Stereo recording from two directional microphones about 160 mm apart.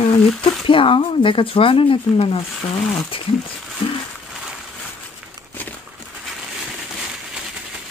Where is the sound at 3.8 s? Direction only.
30° left (ahead or behind).